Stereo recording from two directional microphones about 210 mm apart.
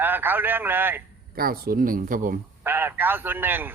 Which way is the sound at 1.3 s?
45° right (ahead or behind).